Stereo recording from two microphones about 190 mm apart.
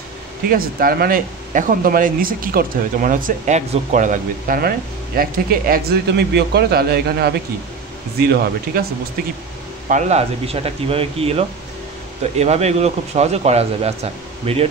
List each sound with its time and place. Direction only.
0.5 s speech: 50° right (ahead or behind)
9.8 s speech: 40° right (ahead or behind)